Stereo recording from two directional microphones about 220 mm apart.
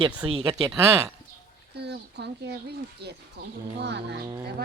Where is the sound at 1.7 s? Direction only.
50° right (ahead or behind).